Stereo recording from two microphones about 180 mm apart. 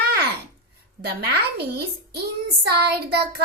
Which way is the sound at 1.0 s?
65° right (ahead or behind).